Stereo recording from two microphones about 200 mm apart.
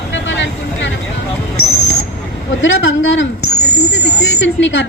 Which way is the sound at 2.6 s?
70° left (ahead or behind).